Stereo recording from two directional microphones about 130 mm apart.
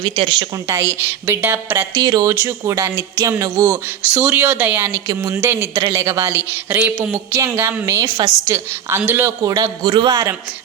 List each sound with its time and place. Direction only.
0.2 s speech: 40° right (ahead or behind)
0.7 s a woman's voice: 20° right (ahead or behind)
2.0 s speech: 30° right (ahead or behind)
2.3 s speech: 20° right (ahead or behind)
4.1 s a woman's voice: 15° right (ahead or behind); by 10.2 s 35° right (ahead or behind)